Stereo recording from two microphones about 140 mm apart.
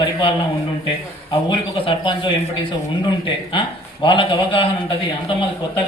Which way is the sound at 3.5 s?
35° left (ahead or behind).